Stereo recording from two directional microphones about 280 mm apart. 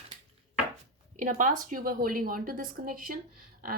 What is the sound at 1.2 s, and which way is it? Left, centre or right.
A woman's voice, right.